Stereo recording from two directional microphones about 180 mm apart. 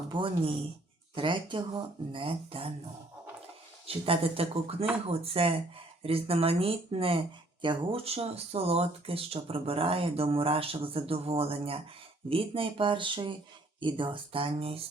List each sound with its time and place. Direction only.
0.1 s speech: 30° right (ahead or behind)
3.8 s speech: 30° right (ahead or behind)